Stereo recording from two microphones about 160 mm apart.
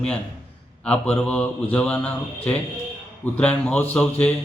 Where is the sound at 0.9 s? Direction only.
5° left (ahead or behind).